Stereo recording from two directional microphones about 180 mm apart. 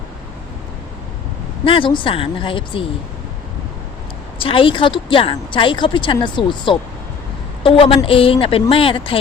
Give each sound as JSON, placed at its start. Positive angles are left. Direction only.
{"t": 1.6, "sound": "speech", "side_deg": 30}
{"t": 4.4, "sound": "a woman's voice", "side_deg": 30}